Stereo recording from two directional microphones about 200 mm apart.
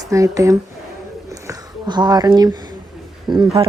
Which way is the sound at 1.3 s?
15° right (ahead or behind).